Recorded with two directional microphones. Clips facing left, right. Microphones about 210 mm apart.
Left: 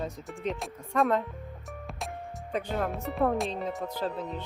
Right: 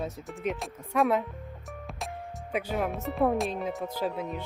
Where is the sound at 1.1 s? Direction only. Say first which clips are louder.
Right 1 dB; 5° right (ahead or behind).